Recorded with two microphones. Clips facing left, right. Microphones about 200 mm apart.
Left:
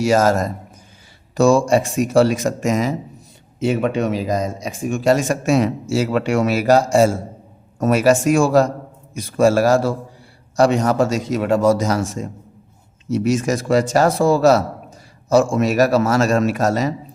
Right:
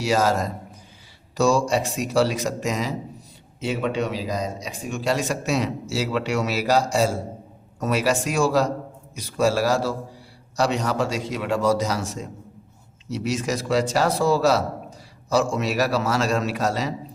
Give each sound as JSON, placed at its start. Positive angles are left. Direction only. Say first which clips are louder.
{"t": 0.0, "sound": "a man's voice", "louder": "left 5 dB", "side_deg": 45}